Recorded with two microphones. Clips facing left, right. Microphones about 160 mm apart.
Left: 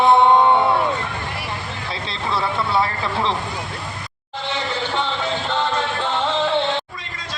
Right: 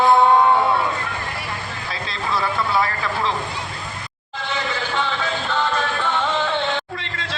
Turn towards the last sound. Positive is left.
turn(degrees=25)  # may be behind; listen again after turning